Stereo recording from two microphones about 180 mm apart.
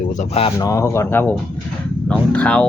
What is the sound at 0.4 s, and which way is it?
Speech, 20° left (ahead or behind).